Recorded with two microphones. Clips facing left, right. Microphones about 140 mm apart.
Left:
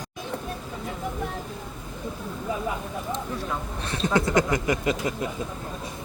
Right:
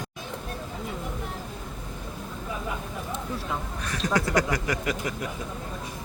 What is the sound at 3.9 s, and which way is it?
Speech, 25° left (ahead or behind).